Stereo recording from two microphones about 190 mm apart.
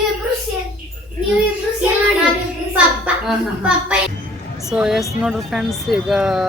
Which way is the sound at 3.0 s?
5° right (ahead or behind).